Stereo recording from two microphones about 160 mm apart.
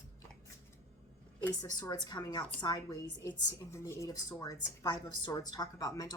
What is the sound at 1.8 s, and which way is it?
A woman's voice, 25° left (ahead or behind).